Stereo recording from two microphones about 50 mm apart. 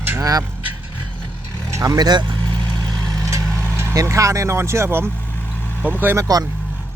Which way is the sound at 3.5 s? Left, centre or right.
Right.